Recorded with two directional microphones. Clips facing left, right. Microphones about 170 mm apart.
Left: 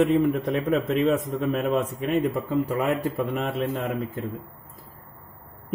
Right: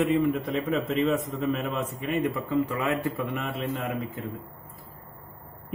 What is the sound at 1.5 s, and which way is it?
A man's voice, 45° left (ahead or behind).